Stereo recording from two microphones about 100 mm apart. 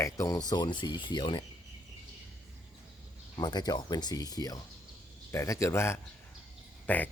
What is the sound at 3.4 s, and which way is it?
Speech, 45° left (ahead or behind).